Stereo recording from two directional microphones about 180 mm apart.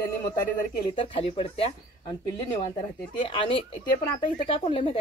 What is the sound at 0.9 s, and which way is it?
Speech, 30° left (ahead or behind).